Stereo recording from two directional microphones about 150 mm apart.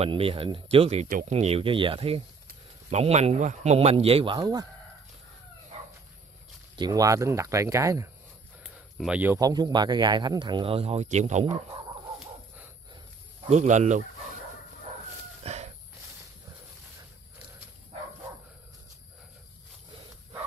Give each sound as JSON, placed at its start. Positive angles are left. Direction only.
{"t": 0.0, "sound": "speech", "side_deg": -35}
{"t": 6.8, "sound": "speech", "side_deg": -25}
{"t": 8.6, "sound": "a sound", "side_deg": -5}
{"t": 9.4, "sound": "speech", "side_deg": -25}
{"t": 13.5, "sound": "speech", "side_deg": -50}
{"t": 15.4, "sound": "a sound", "side_deg": -45}